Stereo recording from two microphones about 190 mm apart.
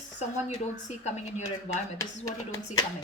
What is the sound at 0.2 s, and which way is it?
A woman's voice, 35° left (ahead or behind).